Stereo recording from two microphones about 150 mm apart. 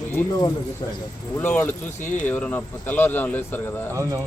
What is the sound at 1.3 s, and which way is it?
A man's voice, 10° left (ahead or behind).